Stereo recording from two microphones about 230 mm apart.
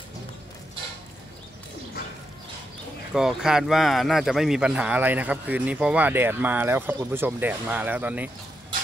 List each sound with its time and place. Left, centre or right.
3.1 s speech: centre